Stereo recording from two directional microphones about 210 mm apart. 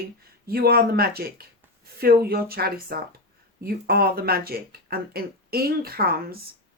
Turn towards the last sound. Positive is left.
turn(degrees=-45)  # may be behind; listen again after turning